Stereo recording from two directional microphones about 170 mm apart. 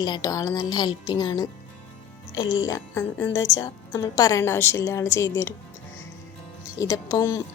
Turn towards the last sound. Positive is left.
turn(degrees=20)  # may be behind; listen again after turning